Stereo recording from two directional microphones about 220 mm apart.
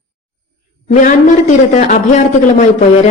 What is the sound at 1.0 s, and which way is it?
A woman's voice, 35° left (ahead or behind).